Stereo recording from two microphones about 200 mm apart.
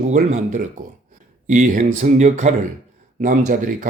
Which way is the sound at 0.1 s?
35° right (ahead or behind).